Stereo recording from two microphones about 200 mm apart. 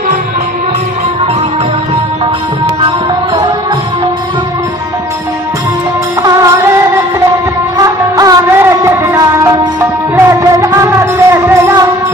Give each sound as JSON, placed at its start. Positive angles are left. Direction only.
{"t": 6.2, "sound": "music", "side_deg": -15}
{"t": 7.7, "sound": "music", "side_deg": -20}